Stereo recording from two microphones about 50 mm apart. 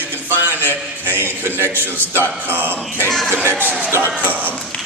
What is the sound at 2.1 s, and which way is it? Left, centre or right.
Speech, right.